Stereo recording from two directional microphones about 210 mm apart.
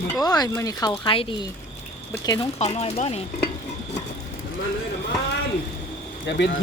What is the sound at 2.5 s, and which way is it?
Speech, 30° left (ahead or behind).